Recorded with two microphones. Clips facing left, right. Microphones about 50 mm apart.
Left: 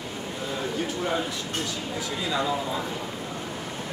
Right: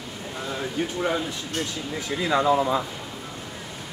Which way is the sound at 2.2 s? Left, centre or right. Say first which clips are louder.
Right 7 dB; right.